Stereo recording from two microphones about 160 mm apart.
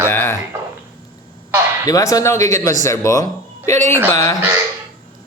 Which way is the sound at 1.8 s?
20° left (ahead or behind).